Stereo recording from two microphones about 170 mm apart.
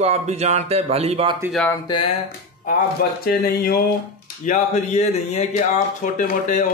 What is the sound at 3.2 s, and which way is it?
Speech, 60° left (ahead or behind).